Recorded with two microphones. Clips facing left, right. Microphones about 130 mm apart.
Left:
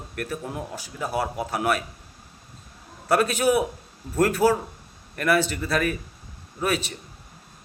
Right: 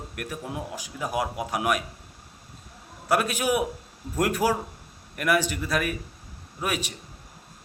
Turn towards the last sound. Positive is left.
turn(degrees=-15)  # may be behind; listen again after turning